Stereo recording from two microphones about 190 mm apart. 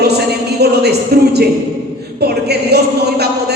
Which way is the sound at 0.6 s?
60° right (ahead or behind).